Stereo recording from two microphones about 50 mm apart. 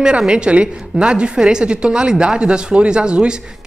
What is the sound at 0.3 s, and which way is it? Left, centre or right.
A woman's voice, right.